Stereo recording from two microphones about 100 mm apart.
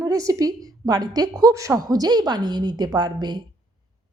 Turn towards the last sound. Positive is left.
turn(degrees=-45)  # may be behind; listen again after turning